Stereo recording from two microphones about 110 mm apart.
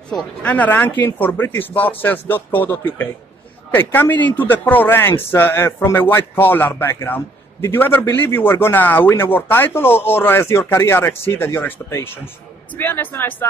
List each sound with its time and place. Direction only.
0.1 s speech: 15° left (ahead or behind)